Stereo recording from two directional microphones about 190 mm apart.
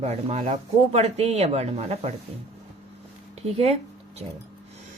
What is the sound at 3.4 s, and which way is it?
Speech, 35° right (ahead or behind).